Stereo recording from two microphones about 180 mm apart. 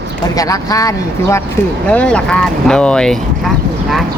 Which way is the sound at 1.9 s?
5° left (ahead or behind).